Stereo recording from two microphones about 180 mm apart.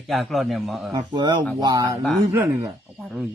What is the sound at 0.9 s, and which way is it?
A man's voice, 25° right (ahead or behind).